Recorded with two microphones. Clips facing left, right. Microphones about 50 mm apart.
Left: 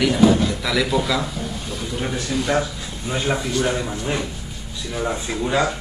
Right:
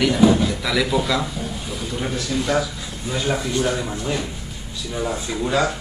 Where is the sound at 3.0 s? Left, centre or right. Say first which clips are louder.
Even; centre.